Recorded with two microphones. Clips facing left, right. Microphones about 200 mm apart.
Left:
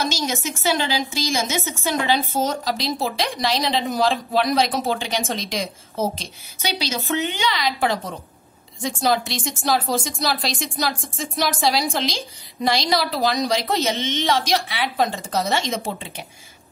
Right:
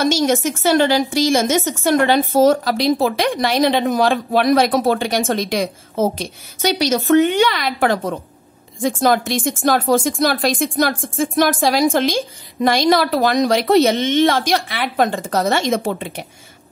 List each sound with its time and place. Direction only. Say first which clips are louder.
0.0 s a woman's voice: right 9 dB; 50° right (ahead or behind)